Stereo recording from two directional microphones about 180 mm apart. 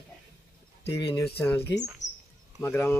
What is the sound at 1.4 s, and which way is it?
Speech, 10° left (ahead or behind).